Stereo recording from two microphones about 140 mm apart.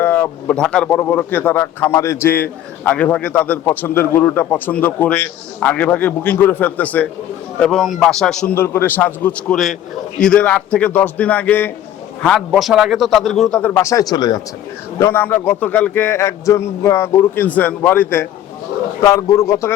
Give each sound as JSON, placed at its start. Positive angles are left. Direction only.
{"t": 0.0, "sound": "a man's voice", "side_deg": 15}
{"t": 8.5, "sound": "a man's voice", "side_deg": 15}
{"t": 12.5, "sound": "speech", "side_deg": 0}
{"t": 13.6, "sound": "speech", "side_deg": 15}
{"t": 14.9, "sound": "a man's voice", "side_deg": 15}